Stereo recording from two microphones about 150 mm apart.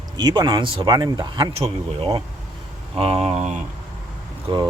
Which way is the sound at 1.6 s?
40° right (ahead or behind).